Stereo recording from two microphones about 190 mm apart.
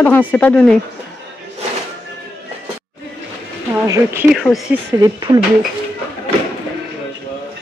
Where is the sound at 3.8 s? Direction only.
15° right (ahead or behind).